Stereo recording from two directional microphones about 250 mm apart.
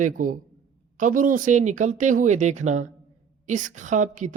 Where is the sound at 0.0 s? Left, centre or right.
Right.